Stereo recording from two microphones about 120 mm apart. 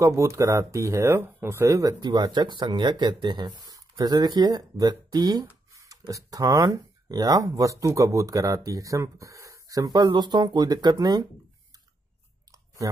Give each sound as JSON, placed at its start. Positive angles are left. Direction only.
{"t": 0.0, "sound": "speech", "side_deg": -25}